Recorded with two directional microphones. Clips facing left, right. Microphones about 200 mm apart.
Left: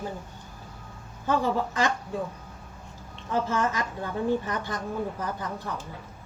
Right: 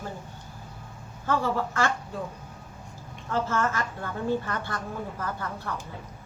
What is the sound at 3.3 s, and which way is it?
A woman's voice, 15° left (ahead or behind).